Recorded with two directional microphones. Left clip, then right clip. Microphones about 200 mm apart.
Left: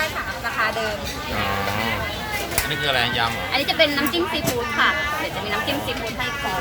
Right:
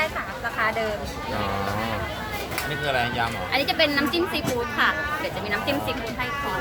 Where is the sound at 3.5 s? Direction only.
15° right (ahead or behind).